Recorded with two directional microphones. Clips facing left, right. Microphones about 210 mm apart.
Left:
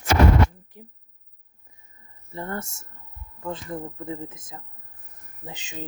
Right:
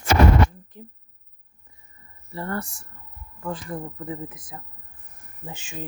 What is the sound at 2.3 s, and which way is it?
Speech, 20° left (ahead or behind).